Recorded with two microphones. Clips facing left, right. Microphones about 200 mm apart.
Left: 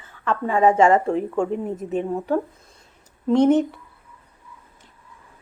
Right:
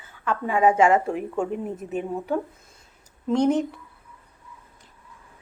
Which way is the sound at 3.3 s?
Centre (ahead or behind).